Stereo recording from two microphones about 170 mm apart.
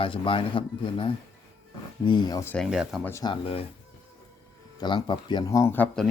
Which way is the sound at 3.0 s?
15° left (ahead or behind).